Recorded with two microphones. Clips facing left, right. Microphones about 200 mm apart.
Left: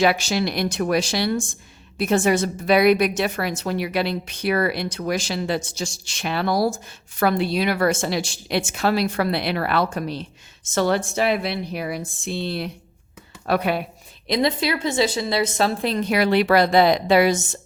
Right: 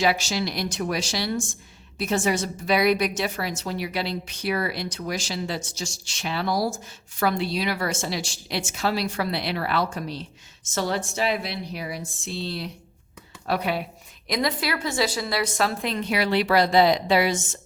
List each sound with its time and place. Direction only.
0.0 s a woman's voice: 55° left (ahead or behind)
14.3 s a woman's voice: 25° left (ahead or behind); by 17.4 s 50° left (ahead or behind)